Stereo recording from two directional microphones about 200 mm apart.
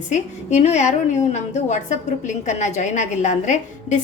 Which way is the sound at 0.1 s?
35° left (ahead or behind).